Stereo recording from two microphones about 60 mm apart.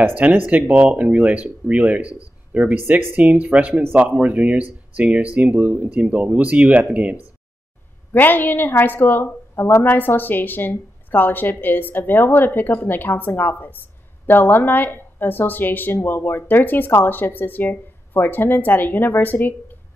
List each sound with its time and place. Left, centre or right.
0.1 s speech: right
8.1 s a woman's voice: left